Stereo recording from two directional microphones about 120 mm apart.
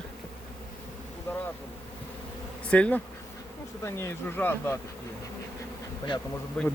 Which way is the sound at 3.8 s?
20° left (ahead or behind).